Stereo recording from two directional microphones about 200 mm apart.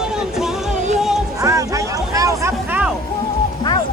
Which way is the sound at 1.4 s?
15° right (ahead or behind).